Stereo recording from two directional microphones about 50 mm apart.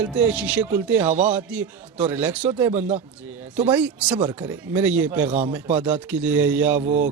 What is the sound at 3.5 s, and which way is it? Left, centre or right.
Speech, right.